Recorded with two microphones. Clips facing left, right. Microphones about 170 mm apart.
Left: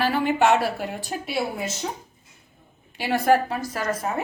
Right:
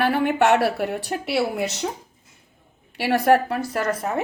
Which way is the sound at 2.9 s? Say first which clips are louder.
Right 2 dB; 65° right (ahead or behind).